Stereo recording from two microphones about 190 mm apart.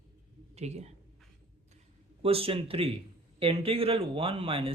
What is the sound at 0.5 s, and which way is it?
Speech, 35° right (ahead or behind).